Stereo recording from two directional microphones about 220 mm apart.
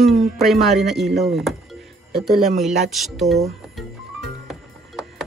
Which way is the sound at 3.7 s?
Centre (ahead or behind).